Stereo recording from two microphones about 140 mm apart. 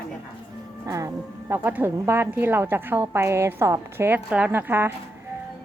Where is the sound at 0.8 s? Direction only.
25° right (ahead or behind).